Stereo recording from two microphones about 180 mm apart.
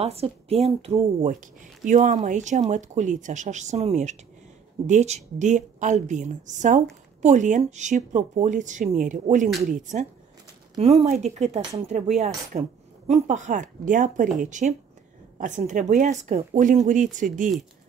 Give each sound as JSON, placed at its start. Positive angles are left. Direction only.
{"t": 0.0, "sound": "speech", "side_deg": -35}